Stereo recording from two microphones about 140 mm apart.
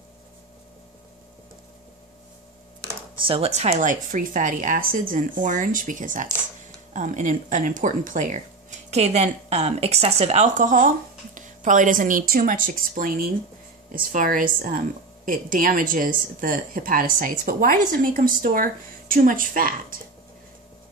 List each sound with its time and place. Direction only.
3.3 s a woman's voice: 45° right (ahead or behind); by 16.1 s 75° right (ahead or behind)
16.3 s a woman's voice: 85° right